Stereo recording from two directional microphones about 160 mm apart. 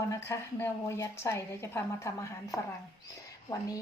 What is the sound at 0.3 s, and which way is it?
A woman's voice, 15° left (ahead or behind).